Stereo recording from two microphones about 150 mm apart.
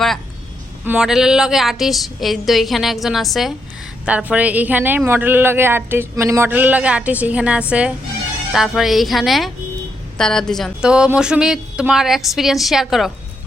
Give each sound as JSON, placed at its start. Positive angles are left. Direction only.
{"t": 0.9, "sound": "speech", "side_deg": -5}